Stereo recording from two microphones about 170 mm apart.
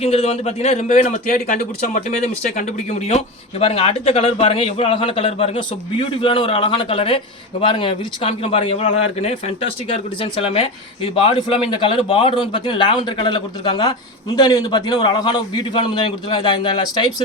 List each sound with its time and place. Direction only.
0.0 s a man's voice: 35° left (ahead or behind)